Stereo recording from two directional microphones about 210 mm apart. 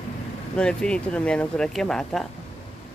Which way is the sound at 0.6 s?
5° left (ahead or behind).